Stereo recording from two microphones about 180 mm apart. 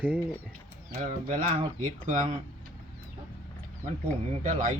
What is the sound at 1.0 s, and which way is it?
Speech, 50° right (ahead or behind).